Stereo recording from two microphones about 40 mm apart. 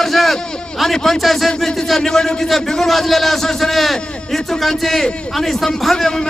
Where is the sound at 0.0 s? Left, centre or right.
Centre.